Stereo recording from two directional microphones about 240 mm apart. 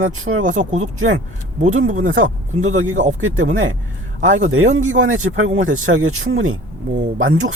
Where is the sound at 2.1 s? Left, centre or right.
Right.